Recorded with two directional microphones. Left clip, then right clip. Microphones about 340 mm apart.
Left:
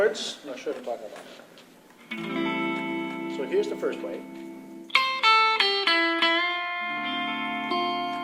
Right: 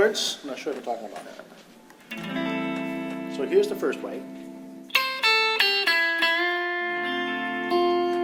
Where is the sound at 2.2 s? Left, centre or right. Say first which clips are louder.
Left 1 dB; left.